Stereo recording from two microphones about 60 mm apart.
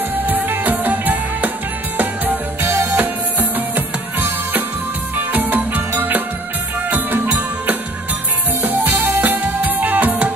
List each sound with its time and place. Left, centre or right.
0.1 s music: right